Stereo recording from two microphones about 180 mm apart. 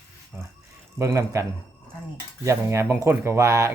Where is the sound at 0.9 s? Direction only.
15° right (ahead or behind).